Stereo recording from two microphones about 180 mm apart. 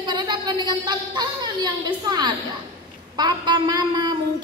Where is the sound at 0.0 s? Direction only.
25° right (ahead or behind).